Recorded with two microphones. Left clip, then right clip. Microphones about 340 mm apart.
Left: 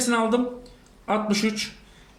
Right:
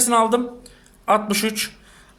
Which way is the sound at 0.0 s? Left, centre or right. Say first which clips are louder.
Right 5 dB; centre.